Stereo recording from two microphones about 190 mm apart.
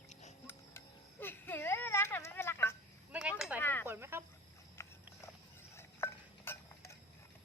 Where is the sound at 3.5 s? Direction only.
10° left (ahead or behind).